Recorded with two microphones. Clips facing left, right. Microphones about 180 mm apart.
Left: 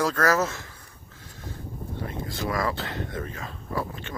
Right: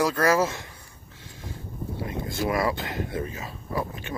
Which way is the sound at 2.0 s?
15° right (ahead or behind).